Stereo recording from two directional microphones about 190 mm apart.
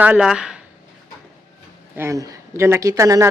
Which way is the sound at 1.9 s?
15° right (ahead or behind).